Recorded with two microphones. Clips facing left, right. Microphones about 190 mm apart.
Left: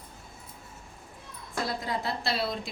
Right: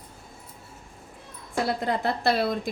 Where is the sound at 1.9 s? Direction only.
55° right (ahead or behind).